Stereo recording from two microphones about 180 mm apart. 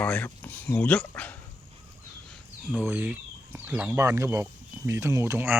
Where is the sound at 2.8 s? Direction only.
10° right (ahead or behind).